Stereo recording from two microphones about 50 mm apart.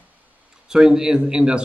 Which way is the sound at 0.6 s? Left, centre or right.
Centre.